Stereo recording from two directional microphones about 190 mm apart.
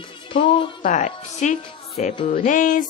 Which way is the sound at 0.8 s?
40° left (ahead or behind).